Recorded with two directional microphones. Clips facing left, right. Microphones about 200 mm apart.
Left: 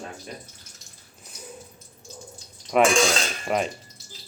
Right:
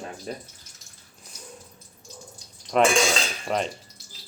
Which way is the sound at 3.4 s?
5° left (ahead or behind).